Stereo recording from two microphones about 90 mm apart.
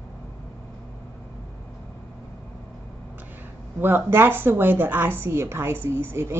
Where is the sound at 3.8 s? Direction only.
25° right (ahead or behind).